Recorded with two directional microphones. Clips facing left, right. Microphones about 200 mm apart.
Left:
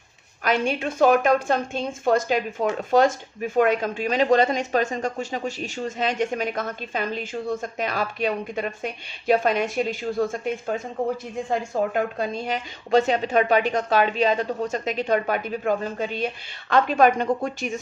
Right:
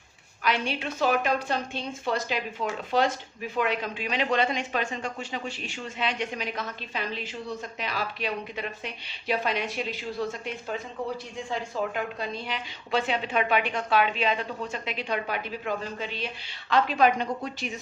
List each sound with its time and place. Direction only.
0.4 s a woman's voice: 45° left (ahead or behind)